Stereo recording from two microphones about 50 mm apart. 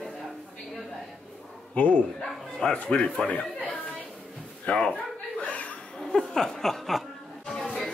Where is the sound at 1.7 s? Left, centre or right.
Left.